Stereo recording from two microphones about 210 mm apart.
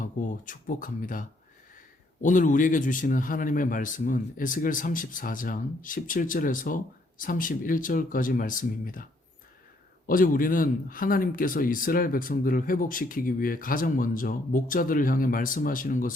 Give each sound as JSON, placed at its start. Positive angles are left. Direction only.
{"t": 0.0, "sound": "a man's voice", "side_deg": 40}
{"t": 2.2, "sound": "a man's voice", "side_deg": 40}
{"t": 10.1, "sound": "a man's voice", "side_deg": 40}